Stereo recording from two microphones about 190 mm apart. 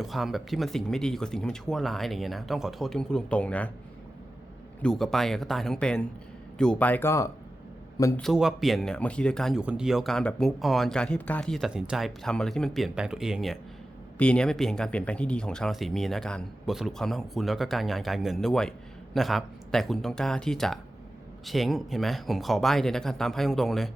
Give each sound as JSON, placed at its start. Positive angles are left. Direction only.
{"t": 0.0, "sound": "speech", "side_deg": 0}
{"t": 4.8, "sound": "a man's voice", "side_deg": 5}
{"t": 8.2, "sound": "speech", "side_deg": 0}